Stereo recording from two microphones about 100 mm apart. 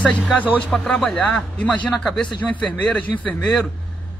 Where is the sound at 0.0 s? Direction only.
15° left (ahead or behind).